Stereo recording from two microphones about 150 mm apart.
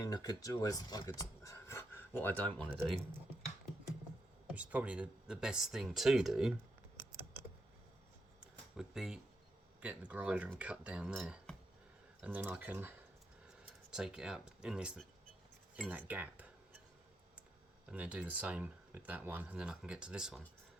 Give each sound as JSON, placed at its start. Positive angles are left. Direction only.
{"t": 0.0, "sound": "speech", "side_deg": 25}
{"t": 4.5, "sound": "speech", "side_deg": -10}
{"t": 8.7, "sound": "speech", "side_deg": -5}
{"t": 17.8, "sound": "speech", "side_deg": -10}